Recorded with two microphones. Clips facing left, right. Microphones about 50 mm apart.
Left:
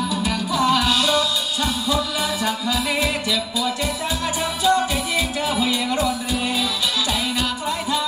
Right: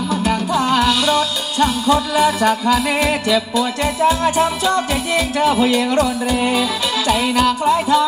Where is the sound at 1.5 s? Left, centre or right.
Right.